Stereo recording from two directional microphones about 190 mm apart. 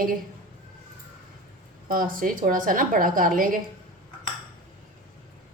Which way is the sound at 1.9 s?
50° right (ahead or behind).